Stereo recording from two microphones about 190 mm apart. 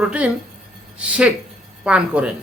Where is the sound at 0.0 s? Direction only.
5° right (ahead or behind).